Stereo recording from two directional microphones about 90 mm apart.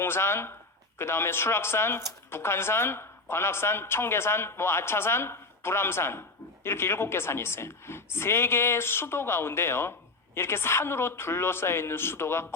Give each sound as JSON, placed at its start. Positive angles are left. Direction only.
{"t": 0.0, "sound": "a man's voice", "side_deg": 25}